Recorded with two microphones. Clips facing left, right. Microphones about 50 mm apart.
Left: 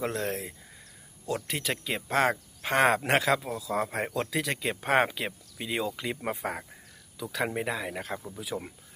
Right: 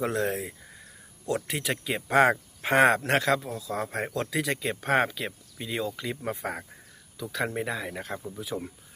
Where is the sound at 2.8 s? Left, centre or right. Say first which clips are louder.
Right 1 dB; centre.